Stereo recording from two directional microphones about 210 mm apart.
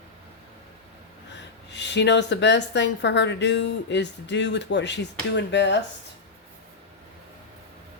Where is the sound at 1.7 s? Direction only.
55° left (ahead or behind).